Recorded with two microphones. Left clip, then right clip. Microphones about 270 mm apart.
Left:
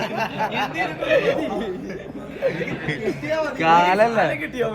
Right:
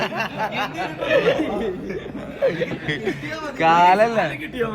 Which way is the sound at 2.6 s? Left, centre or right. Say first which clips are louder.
Right 1 dB; centre.